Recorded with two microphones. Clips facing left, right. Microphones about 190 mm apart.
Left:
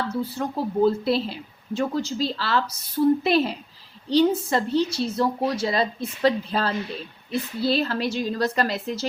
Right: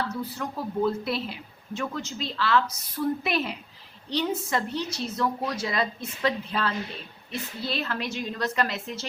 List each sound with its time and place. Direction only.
0.2 s speech: 30° left (ahead or behind)